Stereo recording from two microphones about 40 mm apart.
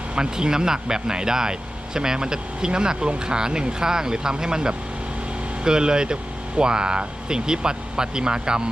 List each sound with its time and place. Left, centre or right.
0.2 s speech: centre